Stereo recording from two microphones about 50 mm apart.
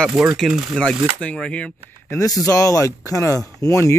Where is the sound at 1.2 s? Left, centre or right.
Left.